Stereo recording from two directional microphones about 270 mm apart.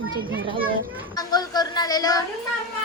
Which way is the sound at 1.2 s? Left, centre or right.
Centre.